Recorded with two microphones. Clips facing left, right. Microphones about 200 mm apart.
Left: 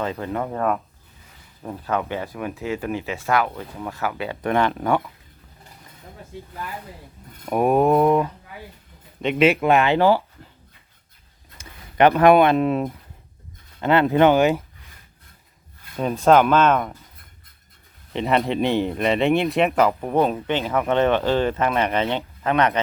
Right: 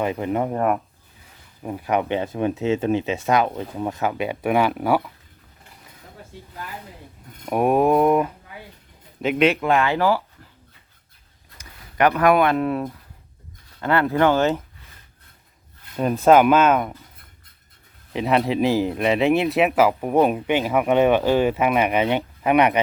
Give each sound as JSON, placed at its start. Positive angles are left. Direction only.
{"t": 0.0, "sound": "speech", "side_deg": -15}
{"t": 7.4, "sound": "speech", "side_deg": 0}
{"t": 9.5, "sound": "speech", "side_deg": 20}
{"t": 11.5, "sound": "speech", "side_deg": 25}
{"t": 16.0, "sound": "speech", "side_deg": -5}
{"t": 18.1, "sound": "speech", "side_deg": 0}